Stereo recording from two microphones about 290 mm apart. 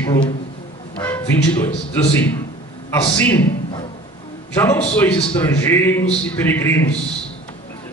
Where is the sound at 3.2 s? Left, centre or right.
Centre.